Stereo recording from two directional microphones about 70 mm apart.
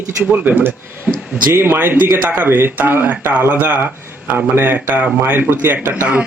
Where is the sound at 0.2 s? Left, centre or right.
Right.